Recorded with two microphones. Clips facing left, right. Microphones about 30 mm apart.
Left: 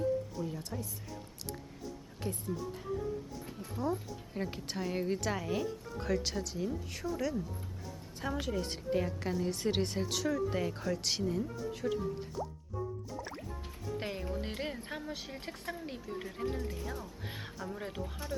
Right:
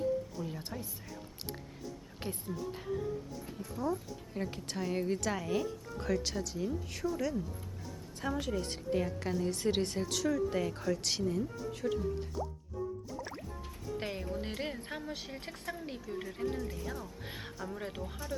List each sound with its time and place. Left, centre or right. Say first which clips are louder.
0.4 s speech: left 1 dB; centre
2.3 s speech: left 2 dB; centre
3.8 s a woman's voice: even; centre
13.1 s music: even; centre
14.0 s a woman's voice: even; centre